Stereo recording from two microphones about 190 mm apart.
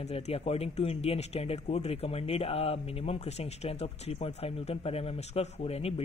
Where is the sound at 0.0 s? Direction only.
35° left (ahead or behind).